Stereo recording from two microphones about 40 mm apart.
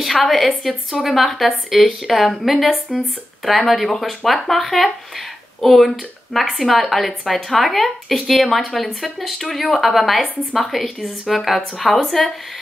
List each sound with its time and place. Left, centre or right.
0.0 s a woman's voice: centre